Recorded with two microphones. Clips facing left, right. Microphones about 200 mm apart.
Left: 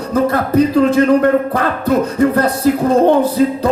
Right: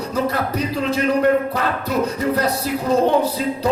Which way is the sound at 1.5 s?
50° left (ahead or behind).